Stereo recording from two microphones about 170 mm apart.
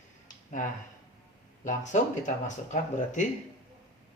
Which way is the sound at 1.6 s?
45° left (ahead or behind).